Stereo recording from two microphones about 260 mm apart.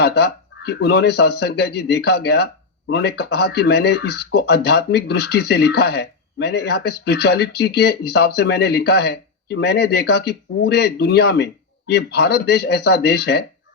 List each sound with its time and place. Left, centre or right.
0.0 s speech: left